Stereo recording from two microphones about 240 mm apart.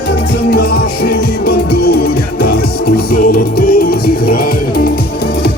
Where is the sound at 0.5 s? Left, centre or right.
Left.